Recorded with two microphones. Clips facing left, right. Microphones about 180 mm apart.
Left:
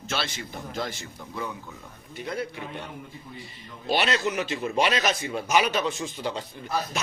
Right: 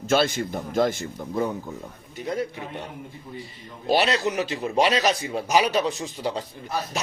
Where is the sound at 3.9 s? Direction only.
35° right (ahead or behind).